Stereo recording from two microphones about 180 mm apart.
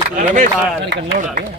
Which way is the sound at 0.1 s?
45° right (ahead or behind).